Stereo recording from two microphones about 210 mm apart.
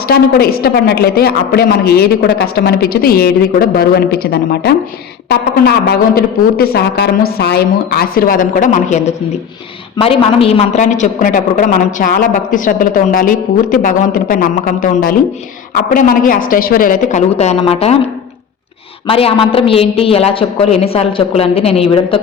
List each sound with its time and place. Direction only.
0.1 s a man's voice: 45° left (ahead or behind); by 18.0 s 30° left (ahead or behind)
19.0 s a woman's voice: 25° left (ahead or behind)